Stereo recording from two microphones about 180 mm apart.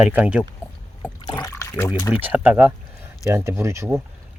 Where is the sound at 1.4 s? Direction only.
20° left (ahead or behind).